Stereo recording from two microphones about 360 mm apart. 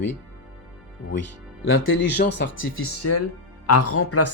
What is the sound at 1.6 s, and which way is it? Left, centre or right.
Speech, left.